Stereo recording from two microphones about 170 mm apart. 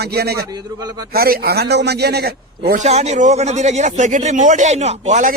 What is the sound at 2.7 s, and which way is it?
Speech, 45° right (ahead or behind).